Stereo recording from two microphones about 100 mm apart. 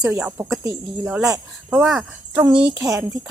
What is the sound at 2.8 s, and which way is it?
Speech, 30° right (ahead or behind).